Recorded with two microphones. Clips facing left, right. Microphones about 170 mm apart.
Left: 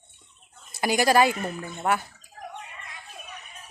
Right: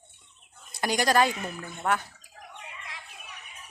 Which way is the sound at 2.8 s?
85° right.